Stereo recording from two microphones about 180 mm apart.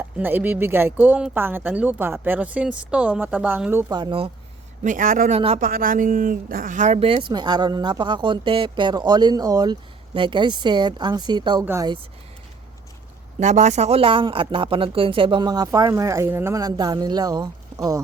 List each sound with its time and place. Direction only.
0.0 s speech: 10° right (ahead or behind)
3.9 s speech: 25° right (ahead or behind)
4.8 s a man's voice: 45° right (ahead or behind); by 11.6 s 25° right (ahead or behind)
11.6 s speech: 15° right (ahead or behind)
13.4 s speech: 40° right (ahead or behind); by 18.0 s 20° right (ahead or behind)